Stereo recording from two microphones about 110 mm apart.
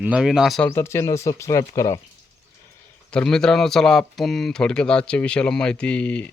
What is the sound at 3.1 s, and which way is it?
Speech, 5° left (ahead or behind).